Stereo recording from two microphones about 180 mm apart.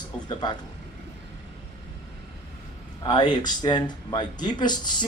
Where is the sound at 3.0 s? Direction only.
25° left (ahead or behind).